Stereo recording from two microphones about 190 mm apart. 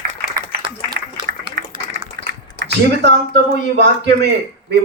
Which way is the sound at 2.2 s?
60° right (ahead or behind).